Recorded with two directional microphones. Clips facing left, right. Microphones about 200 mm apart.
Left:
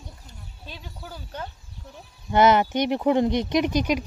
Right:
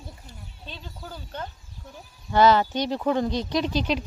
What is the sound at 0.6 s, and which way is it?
Speech, 10° left (ahead or behind).